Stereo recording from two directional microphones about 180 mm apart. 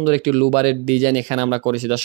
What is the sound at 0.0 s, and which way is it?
Speech, 35° right (ahead or behind).